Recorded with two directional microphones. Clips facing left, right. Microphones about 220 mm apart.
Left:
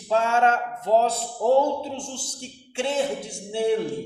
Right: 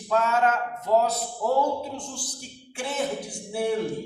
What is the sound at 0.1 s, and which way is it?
Speech, 30° left (ahead or behind).